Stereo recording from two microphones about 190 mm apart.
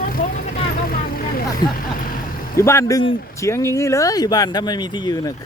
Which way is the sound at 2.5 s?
15° left (ahead or behind).